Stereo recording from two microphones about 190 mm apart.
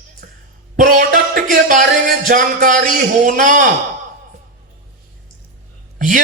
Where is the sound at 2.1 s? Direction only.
45° right (ahead or behind).